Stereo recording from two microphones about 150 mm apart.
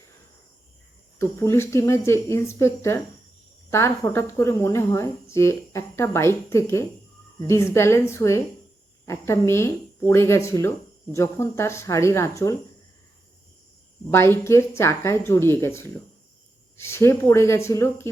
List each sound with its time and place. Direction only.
1.2 s a woman's voice: 15° left (ahead or behind)
14.1 s a woman's voice: 15° left (ahead or behind)